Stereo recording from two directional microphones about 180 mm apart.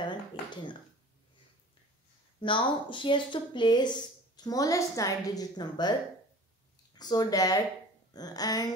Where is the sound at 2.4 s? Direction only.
30° left (ahead or behind).